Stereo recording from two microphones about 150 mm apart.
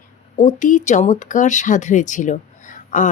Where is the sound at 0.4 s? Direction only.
55° left (ahead or behind).